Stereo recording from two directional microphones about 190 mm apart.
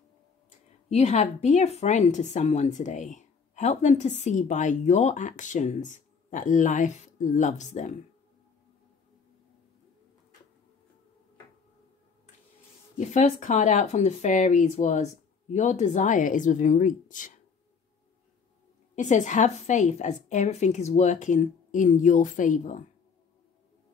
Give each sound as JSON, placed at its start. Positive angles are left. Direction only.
{"t": 0.8, "sound": "speech", "side_deg": 35}
{"t": 12.9, "sound": "speech", "side_deg": 40}
{"t": 18.9, "sound": "speech", "side_deg": 40}